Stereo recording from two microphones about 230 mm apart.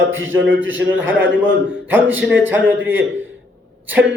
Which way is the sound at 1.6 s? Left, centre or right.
Centre.